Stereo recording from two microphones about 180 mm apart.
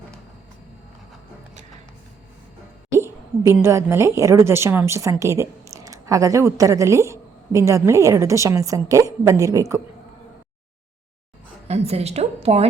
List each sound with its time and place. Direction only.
3.0 s a woman's voice: 15° right (ahead or behind)
11.7 s a woman's voice: 35° right (ahead or behind)